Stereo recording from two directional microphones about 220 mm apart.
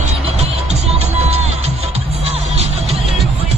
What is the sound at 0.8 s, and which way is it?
Music, 30° right (ahead or behind).